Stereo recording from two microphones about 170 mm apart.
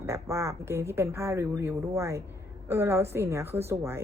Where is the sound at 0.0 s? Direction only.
15° right (ahead or behind).